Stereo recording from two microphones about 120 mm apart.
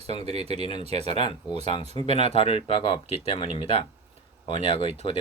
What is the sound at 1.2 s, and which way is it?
Speech, 50° left (ahead or behind).